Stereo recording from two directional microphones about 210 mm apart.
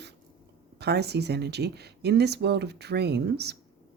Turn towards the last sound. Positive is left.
turn(degrees=-50)  # may be behind; listen again after turning